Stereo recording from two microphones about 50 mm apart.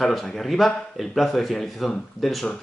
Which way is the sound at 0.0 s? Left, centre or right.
Centre.